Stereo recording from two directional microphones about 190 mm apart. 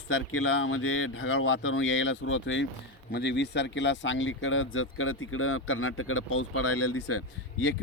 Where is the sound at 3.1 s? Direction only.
65° left (ahead or behind); by 6.5 s 90° left.